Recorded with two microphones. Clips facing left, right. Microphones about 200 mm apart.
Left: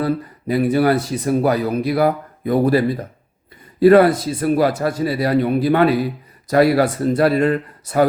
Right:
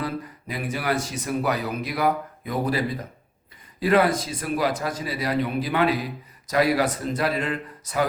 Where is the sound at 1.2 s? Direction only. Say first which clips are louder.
Left 8 dB; 35° left (ahead or behind).